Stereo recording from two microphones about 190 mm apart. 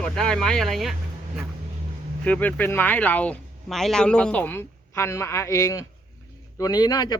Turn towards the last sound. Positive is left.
turn(degrees=20)  # may be behind; listen again after turning